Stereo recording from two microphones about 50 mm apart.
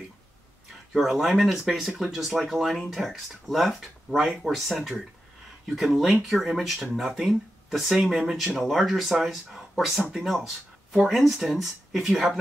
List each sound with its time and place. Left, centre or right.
0.9 s speech: centre
8.5 s speech: centre